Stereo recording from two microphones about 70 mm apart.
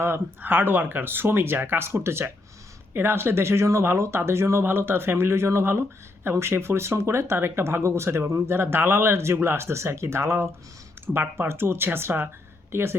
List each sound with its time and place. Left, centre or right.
0.0 s speech: right